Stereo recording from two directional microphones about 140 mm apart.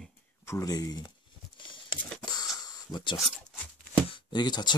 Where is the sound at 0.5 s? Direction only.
25° left (ahead or behind).